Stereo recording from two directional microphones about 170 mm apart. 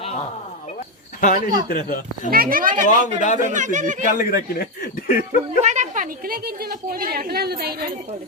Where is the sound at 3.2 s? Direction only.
50° left (ahead or behind).